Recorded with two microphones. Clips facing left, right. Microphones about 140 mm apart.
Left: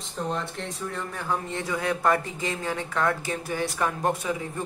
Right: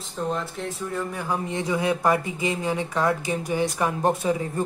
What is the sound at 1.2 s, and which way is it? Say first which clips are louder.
Speech: right 1 dB; 15° right (ahead or behind).